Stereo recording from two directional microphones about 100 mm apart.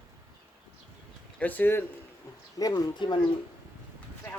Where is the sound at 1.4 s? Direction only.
15° left (ahead or behind).